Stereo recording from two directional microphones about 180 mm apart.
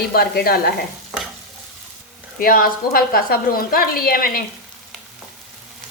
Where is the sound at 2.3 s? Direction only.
55° left (ahead or behind).